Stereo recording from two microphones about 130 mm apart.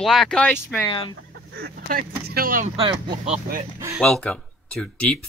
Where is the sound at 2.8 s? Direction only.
40° right (ahead or behind).